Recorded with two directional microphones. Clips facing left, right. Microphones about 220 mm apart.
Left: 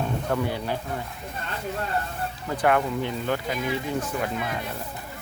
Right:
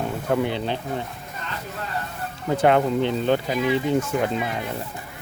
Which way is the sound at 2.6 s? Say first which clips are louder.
Right 4 dB; 25° right (ahead or behind).